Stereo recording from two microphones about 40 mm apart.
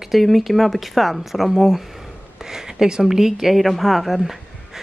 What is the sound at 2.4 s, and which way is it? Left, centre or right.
Speech, centre.